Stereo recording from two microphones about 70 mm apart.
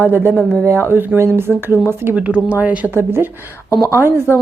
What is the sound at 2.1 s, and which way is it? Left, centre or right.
Speech, centre.